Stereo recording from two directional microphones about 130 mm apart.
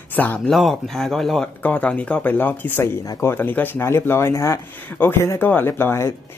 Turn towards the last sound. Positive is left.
turn(degrees=20)  # may be behind; listen again after turning